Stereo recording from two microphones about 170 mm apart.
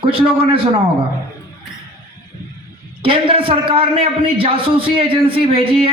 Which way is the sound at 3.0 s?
30° right (ahead or behind).